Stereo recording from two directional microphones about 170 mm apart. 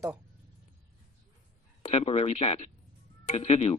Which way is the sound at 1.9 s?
35° left (ahead or behind).